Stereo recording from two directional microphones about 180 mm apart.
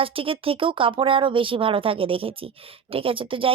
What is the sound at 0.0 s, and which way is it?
Speech, 30° right (ahead or behind).